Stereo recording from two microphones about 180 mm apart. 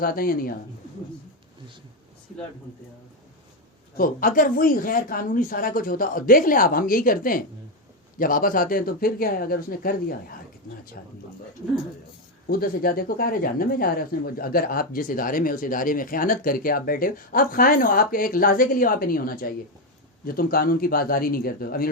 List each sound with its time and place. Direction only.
0.0 s speech: 55° left (ahead or behind)
3.9 s speech: 50° left (ahead or behind)
12.5 s speech: 55° left (ahead or behind)